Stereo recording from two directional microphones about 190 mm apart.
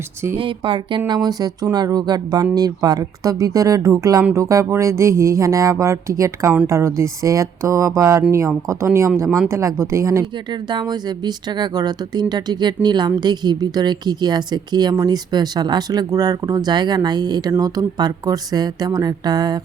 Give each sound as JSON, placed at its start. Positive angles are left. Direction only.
{"t": 0.3, "sound": "speech", "side_deg": -25}